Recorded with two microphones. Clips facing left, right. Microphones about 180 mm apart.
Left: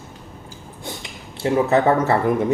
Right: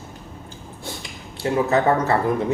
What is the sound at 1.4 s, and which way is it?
Speech, 25° left (ahead or behind).